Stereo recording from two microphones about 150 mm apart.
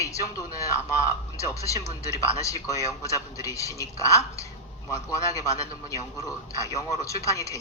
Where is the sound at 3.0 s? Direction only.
20° left (ahead or behind).